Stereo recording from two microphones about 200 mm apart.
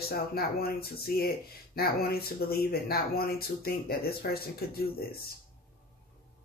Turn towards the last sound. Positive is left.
turn(degrees=50)  # may be behind; listen again after turning